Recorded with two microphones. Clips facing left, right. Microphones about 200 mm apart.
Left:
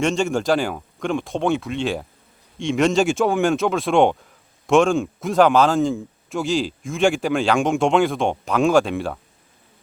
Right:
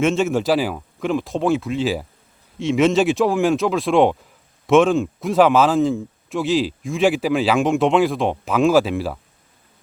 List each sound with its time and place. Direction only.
0.0 s a man's voice: centre (ahead or behind)